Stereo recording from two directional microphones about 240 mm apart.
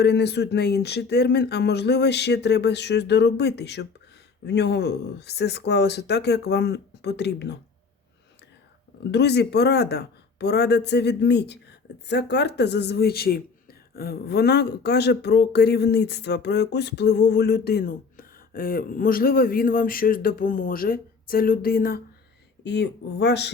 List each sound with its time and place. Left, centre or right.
0.0 s speech: left
9.1 s speech: left